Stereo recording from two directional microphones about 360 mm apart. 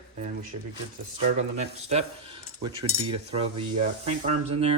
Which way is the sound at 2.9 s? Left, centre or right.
Centre.